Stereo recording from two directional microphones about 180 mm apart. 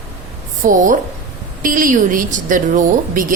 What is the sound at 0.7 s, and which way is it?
A woman's voice, 45° right (ahead or behind).